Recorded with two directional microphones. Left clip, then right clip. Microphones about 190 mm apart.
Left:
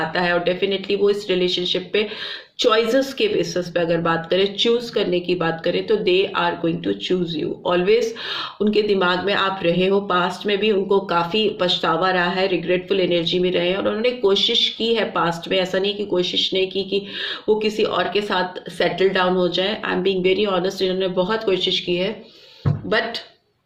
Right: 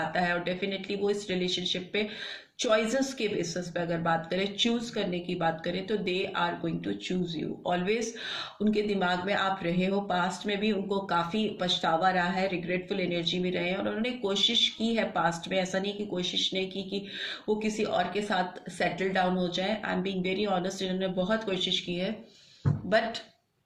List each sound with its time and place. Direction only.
0.1 s speech: 40° left (ahead or behind)